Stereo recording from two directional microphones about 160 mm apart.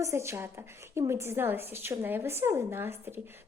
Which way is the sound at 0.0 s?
20° right (ahead or behind).